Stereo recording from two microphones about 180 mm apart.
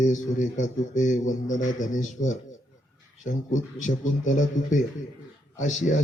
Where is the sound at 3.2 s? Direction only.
45° left (ahead or behind).